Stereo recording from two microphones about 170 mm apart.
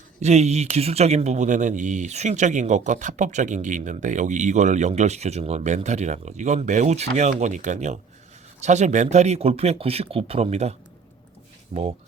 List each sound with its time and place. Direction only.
0.2 s speech: 40° right (ahead or behind)